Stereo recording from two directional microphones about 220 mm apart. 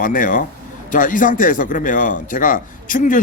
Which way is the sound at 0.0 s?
35° left (ahead or behind).